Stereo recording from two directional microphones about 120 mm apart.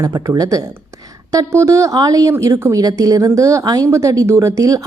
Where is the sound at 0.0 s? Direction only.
30° right (ahead or behind).